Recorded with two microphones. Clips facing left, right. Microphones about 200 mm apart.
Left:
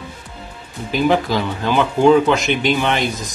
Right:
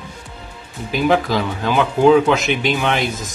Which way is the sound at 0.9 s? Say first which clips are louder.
Even; centre (ahead or behind).